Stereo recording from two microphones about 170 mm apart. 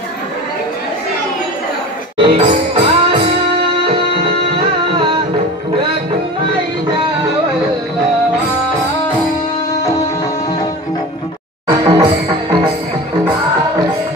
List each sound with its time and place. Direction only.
2.1 s music: 35° right (ahead or behind)
11.6 s music: 25° right (ahead or behind)